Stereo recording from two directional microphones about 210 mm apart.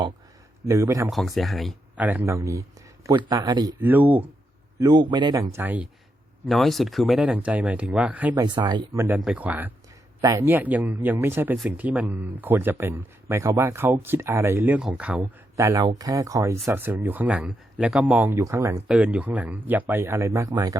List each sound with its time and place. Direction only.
0.6 s speech: 15° right (ahead or behind)
1.1 s speech: centre (ahead or behind)
4.8 s a man's voice: 20° right (ahead or behind)
8.4 s speech: 20° right (ahead or behind)